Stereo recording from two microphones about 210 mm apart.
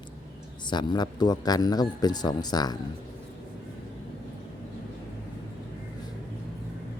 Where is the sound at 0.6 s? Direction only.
20° left (ahead or behind).